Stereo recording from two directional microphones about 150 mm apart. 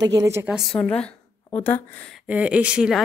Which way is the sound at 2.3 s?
10° right (ahead or behind).